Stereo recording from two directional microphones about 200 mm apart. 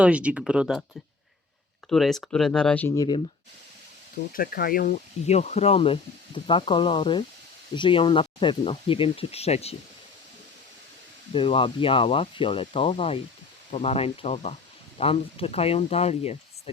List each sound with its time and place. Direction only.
0.0 s speech: 5° right (ahead or behind)
1.9 s speech: centre (ahead or behind); by 3.2 s 15° left (ahead or behind)
4.3 s speech: 45° left (ahead or behind)
11.3 s speech: 25° left (ahead or behind)